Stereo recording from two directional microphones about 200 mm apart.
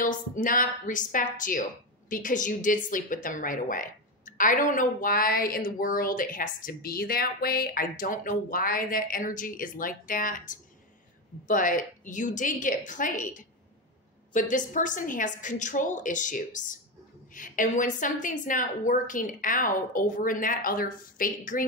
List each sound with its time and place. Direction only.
0.0 s a woman's voice: 40° left (ahead or behind)